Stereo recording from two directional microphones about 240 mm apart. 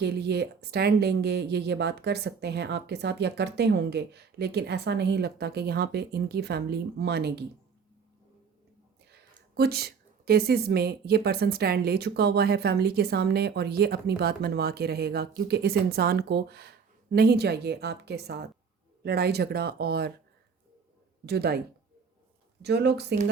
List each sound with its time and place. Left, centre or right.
0.0 s speech: right
9.6 s a woman's voice: right
21.2 s a woman's voice: right
22.6 s speech: right